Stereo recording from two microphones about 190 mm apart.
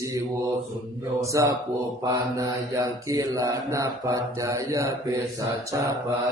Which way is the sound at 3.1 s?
20° right (ahead or behind).